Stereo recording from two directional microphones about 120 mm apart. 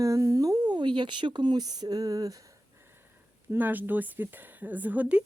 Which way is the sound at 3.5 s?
15° right (ahead or behind).